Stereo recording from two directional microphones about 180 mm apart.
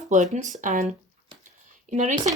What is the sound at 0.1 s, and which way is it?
Speech, 45° right (ahead or behind).